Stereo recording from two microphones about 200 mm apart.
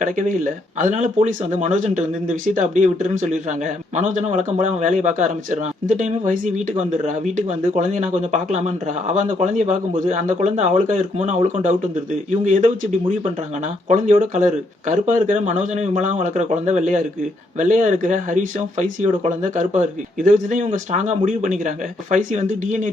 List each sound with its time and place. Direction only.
0.0 s speech: 40° right (ahead or behind)
12.3 s speech: 40° right (ahead or behind)
13.8 s speech: 40° right (ahead or behind)